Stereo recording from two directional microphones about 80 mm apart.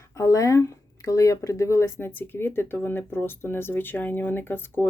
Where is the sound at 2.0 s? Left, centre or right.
Left.